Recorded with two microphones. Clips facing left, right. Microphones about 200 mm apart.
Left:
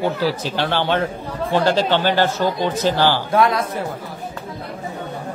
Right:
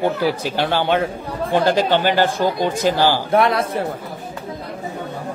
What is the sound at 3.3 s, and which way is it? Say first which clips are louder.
Speech: right 1 dB; 30° right (ahead or behind).